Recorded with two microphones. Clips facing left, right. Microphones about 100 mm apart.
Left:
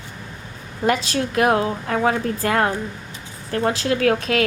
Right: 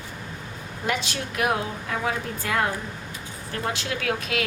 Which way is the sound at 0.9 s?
40° left (ahead or behind).